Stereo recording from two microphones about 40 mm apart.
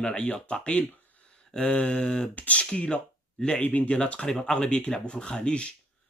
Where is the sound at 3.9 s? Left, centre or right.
Left.